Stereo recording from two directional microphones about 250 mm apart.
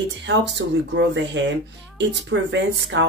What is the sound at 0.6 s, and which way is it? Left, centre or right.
Speech, right.